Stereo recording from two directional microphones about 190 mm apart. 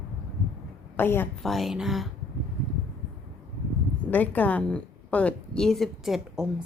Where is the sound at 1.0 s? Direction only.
10° left (ahead or behind).